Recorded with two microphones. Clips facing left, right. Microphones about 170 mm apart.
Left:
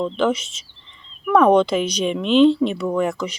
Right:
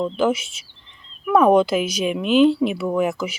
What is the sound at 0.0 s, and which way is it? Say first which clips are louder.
Speech: even; centre (ahead or behind).